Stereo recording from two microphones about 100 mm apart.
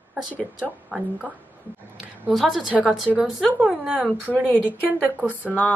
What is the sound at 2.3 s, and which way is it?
Speech, centre (ahead or behind).